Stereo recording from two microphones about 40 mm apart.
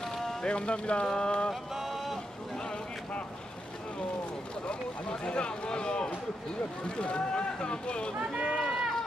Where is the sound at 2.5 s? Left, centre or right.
Centre.